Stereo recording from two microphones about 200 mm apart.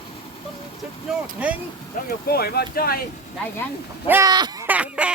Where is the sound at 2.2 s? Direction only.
50° left (ahead or behind).